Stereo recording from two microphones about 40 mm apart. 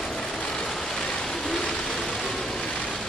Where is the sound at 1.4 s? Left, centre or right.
Centre.